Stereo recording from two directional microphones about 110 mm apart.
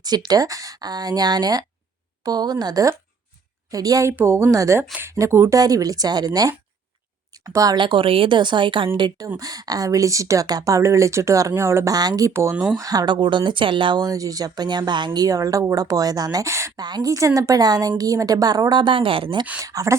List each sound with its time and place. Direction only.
0.0 s speech: 40° right (ahead or behind)
4.1 s speech: 20° right (ahead or behind)
7.8 s speech: 50° right (ahead or behind)
9.0 s speech: 40° right (ahead or behind)
11.9 s speech: 35° right (ahead or behind)
12.5 s speech: 10° right (ahead or behind)
12.8 s speech: 35° right (ahead or behind)
19.6 s speech: 30° right (ahead or behind)